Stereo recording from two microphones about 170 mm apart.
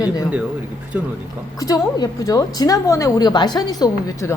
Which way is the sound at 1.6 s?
20° left (ahead or behind).